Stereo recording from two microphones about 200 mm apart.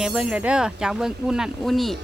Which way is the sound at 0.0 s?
5° right (ahead or behind).